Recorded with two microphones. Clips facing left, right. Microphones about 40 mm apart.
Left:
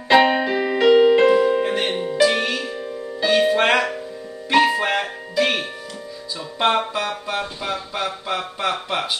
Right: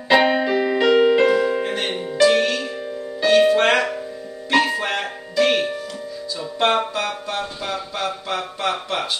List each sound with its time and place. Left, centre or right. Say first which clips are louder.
0.1 s keyboard: left 1 dB; centre
1.0 s music: left 2 dB; centre
6.6 s music: even; centre
7.1 s music: left 1 dB; centre